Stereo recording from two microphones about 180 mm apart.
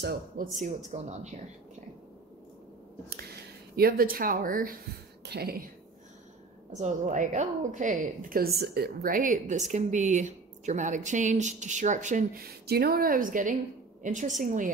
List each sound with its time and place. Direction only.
0.4 s speech: 45° right (ahead or behind)
3.7 s a woman's voice: 55° right (ahead or behind)
5.2 s speech: 65° right (ahead or behind)
6.7 s a woman's voice: 45° right (ahead or behind)